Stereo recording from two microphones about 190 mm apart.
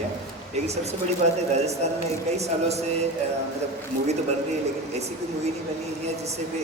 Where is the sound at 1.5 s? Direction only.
35° right (ahead or behind).